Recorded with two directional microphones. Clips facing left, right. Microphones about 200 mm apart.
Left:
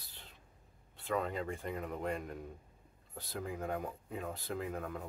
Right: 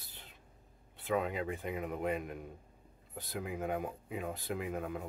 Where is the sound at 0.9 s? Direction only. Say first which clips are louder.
Right 2 dB; 5° right (ahead or behind).